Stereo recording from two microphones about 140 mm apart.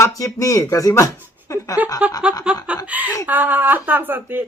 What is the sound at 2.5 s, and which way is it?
Snicker, 5° right (ahead or behind).